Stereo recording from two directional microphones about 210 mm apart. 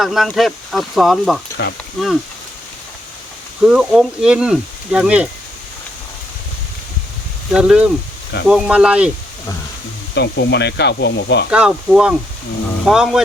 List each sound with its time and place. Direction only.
0.0 s speech: centre (ahead or behind)
1.6 s speech: 55° left (ahead or behind)
2.0 s speech: centre (ahead or behind)
3.6 s speech: 5° right (ahead or behind)
7.5 s speech: 5° right (ahead or behind)
10.2 s speech: 55° left (ahead or behind)
11.5 s speech: 5° right (ahead or behind)